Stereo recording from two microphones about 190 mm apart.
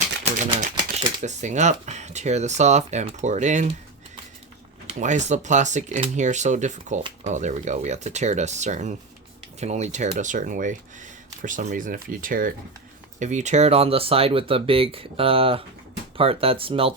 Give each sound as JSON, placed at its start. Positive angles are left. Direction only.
{"t": 0.3, "sound": "speech", "side_deg": -40}
{"t": 4.9, "sound": "speech", "side_deg": -40}